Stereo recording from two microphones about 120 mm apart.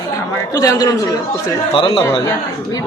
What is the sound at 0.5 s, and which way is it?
Speech, 30° left (ahead or behind).